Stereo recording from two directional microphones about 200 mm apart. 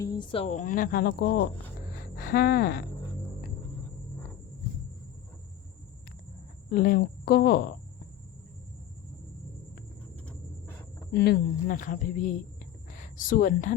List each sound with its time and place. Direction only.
0.0 s a woman's voice: 20° left (ahead or behind); by 2.8 s 50° left (ahead or behind)
6.7 s a woman's voice: 45° left (ahead or behind)
11.1 s a woman's voice: 55° left (ahead or behind)